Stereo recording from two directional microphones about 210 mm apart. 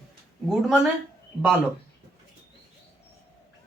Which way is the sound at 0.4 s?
Centre (ahead or behind).